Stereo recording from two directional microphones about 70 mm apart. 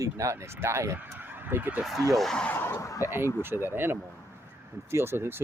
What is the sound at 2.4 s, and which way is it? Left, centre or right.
Speech, left.